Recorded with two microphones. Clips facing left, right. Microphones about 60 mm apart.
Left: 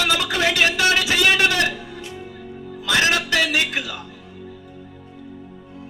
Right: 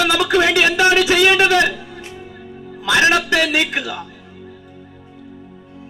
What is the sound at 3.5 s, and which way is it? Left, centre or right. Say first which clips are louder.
Speech: right 3 dB; right.